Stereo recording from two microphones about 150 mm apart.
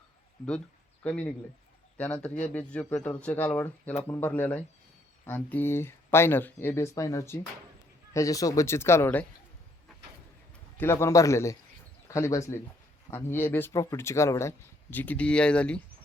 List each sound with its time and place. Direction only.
1.0 s speech: 10° left (ahead or behind)
10.8 s a man's voice: 15° left (ahead or behind)